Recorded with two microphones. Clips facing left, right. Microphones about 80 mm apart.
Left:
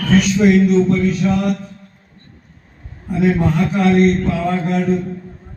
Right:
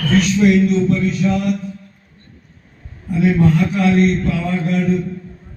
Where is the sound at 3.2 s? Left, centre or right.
Left.